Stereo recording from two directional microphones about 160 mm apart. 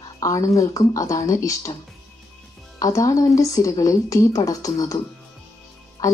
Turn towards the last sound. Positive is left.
turn(degrees=20)  # may be behind; listen again after turning